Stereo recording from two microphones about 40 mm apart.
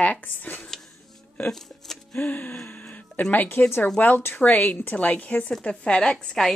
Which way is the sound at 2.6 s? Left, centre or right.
Left.